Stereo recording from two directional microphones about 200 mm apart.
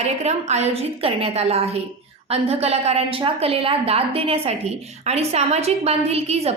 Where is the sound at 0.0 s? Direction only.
35° right (ahead or behind).